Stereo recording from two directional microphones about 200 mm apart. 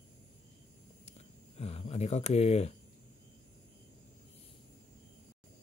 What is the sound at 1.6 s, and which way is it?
Speech, 30° left (ahead or behind).